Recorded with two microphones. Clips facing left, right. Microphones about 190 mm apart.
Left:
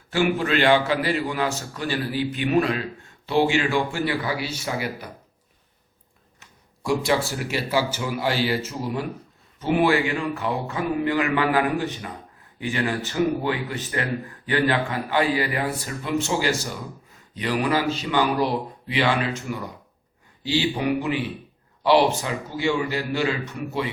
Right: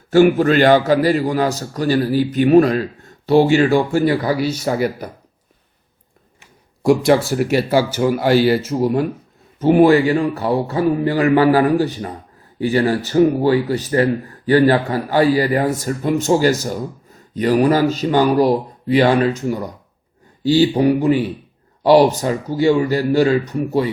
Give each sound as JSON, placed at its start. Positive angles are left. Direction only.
{"t": 0.1, "sound": "a man's voice", "side_deg": -40}
{"t": 6.8, "sound": "a man's voice", "side_deg": -50}